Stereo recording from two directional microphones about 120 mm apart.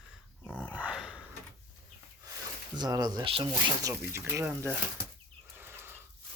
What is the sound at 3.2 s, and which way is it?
Speech, 50° right (ahead or behind).